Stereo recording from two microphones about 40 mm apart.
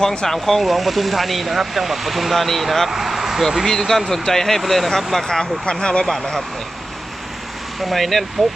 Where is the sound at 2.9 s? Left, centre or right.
Centre.